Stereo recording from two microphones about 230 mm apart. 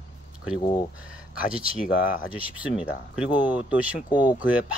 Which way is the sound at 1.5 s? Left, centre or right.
Centre.